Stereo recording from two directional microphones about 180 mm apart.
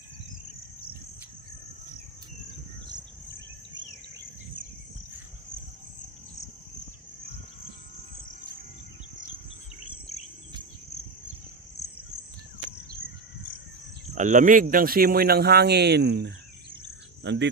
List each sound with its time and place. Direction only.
14.1 s speech: 45° right (ahead or behind); by 17.5 s 80° right